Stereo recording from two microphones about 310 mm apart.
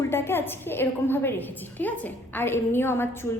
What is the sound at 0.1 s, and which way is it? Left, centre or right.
A woman's voice, centre.